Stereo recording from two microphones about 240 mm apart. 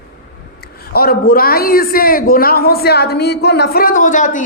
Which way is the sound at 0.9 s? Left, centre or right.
Left.